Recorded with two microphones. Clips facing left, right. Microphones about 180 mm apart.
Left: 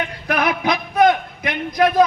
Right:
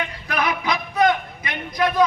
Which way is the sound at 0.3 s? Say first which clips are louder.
Left 4 dB; 65° left (ahead or behind).